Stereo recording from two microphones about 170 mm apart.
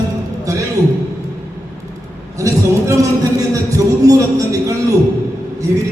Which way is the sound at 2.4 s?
20° right (ahead or behind).